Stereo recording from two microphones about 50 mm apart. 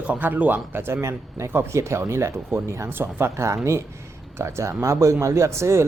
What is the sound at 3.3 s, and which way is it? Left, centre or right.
Speech, right.